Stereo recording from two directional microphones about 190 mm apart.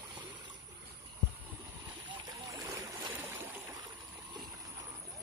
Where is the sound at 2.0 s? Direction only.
15° right (ahead or behind).